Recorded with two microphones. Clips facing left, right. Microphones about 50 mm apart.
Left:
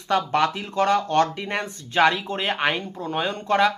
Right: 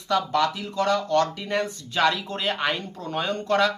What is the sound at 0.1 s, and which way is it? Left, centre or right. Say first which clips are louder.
Speech: left 2 dB; left.